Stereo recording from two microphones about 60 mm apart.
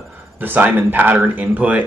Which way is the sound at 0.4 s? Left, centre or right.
Right.